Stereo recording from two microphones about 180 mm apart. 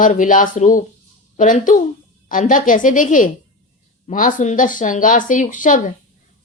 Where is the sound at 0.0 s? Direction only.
45° left (ahead or behind).